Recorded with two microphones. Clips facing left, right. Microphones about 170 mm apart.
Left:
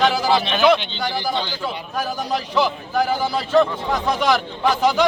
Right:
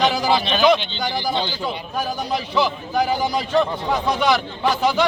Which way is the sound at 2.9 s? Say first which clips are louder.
Even; 15° right (ahead or behind).